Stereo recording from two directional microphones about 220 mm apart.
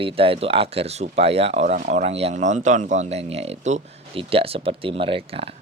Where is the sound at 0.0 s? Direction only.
25° right (ahead or behind).